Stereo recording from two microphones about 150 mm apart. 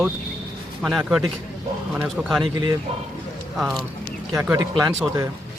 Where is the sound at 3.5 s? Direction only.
Centre (ahead or behind).